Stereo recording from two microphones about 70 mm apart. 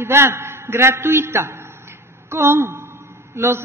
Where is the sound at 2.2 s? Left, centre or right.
Right.